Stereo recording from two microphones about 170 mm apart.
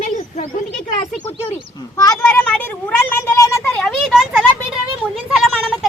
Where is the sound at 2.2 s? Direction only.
10° left (ahead or behind).